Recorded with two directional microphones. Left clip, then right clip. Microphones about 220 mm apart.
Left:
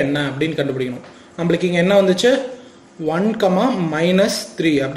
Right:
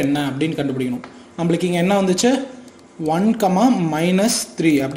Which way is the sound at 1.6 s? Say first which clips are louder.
Left 5 dB; 30° right (ahead or behind).